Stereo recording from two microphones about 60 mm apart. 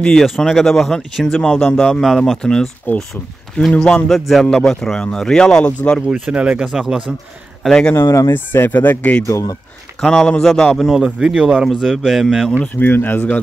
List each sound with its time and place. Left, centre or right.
0.1 s speech: centre
3.7 s speech: centre
4.1 s speech: centre
5.7 s speech: left
6.3 s speech: right
6.7 s speech: centre
8.0 s speech: left
8.3 s speech: left
9.3 s speech: left
9.9 s speech: centre
11.0 s speech: centre
11.6 s speech: centre
12.5 s speech: left